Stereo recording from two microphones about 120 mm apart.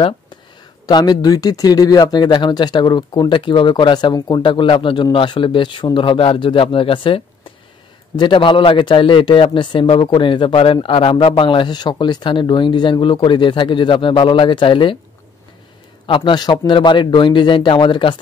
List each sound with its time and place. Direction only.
0.8 s a man's voice: 35° left (ahead or behind)
8.2 s a man's voice: 40° left (ahead or behind)
16.1 s speech: 40° left (ahead or behind)